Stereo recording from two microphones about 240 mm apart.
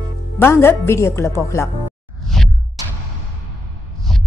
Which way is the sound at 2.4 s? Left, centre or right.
Centre.